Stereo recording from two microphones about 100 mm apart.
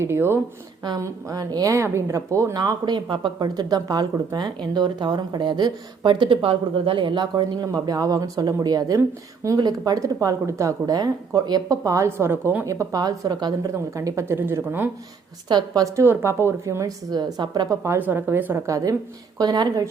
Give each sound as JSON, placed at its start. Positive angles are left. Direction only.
{"t": 0.0, "sound": "speech", "side_deg": -25}
{"t": 0.9, "sound": "a woman's voice", "side_deg": -35}
{"t": 15.4, "sound": "speech", "side_deg": -45}
{"t": 16.0, "sound": "speech", "side_deg": -25}
{"t": 17.8, "sound": "speech", "side_deg": -20}
{"t": 18.6, "sound": "speech", "side_deg": -30}
{"t": 19.4, "sound": "a woman's voice", "side_deg": -45}